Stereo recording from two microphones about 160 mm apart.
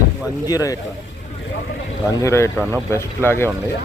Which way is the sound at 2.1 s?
20° left (ahead or behind).